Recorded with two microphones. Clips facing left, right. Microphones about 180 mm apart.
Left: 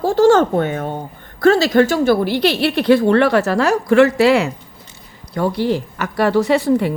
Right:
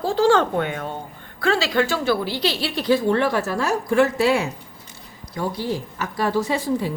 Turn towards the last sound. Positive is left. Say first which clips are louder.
# left 8 dB
turn(degrees=70)  # may be behind; listen again after turning